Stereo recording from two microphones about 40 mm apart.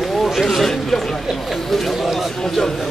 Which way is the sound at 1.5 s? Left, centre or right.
Centre.